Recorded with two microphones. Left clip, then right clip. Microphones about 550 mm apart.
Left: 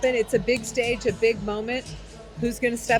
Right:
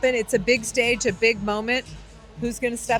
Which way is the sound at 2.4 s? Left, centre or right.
Centre.